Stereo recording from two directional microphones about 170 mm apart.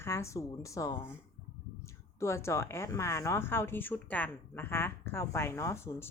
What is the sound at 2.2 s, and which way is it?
Speech, 15° left (ahead or behind).